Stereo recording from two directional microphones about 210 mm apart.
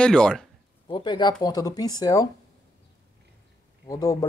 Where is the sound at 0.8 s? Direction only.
20° left (ahead or behind).